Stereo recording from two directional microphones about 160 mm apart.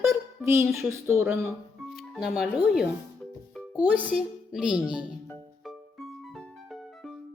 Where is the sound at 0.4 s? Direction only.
15° right (ahead or behind).